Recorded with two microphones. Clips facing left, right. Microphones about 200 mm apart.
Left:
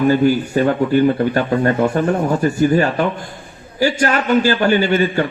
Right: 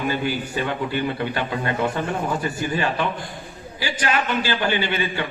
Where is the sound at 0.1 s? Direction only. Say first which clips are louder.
Left 11 dB; 45° left (ahead or behind).